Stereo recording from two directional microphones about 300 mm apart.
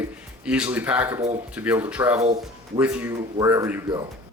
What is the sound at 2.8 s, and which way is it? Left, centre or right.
Speech, centre.